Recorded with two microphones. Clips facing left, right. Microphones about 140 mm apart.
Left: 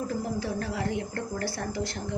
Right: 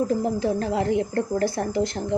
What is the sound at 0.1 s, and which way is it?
Speech, 25° right (ahead or behind).